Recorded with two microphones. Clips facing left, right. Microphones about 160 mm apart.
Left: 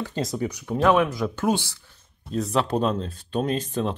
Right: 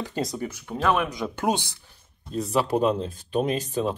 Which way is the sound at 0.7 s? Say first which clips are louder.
Left 4 dB; 5° left (ahead or behind).